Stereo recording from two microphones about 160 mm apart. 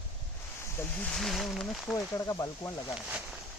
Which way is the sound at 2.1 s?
20° left (ahead or behind).